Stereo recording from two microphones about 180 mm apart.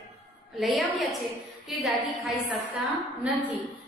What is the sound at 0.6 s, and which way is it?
A woman's voice, centre (ahead or behind).